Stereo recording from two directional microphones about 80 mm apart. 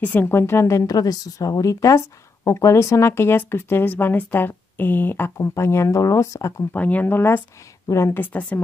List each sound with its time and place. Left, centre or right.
0.0 s a woman's voice: left
6.7 s speech: centre